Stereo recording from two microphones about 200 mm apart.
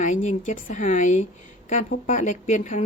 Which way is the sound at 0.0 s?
40° left (ahead or behind).